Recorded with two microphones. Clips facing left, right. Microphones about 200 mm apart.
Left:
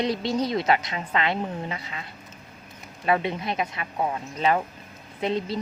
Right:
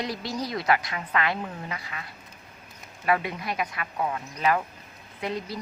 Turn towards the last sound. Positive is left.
turn(degrees=25)  # may be behind; listen again after turning